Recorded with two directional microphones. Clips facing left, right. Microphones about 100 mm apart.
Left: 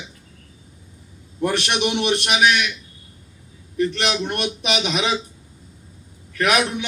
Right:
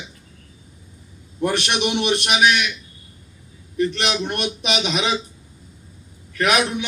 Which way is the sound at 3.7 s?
20° right (ahead or behind).